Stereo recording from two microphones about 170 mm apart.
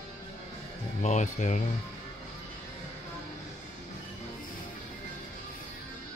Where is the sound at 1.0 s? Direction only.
45° left (ahead or behind).